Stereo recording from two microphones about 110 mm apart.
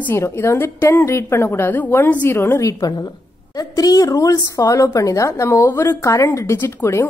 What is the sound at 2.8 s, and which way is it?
A woman's voice, 35° left (ahead or behind).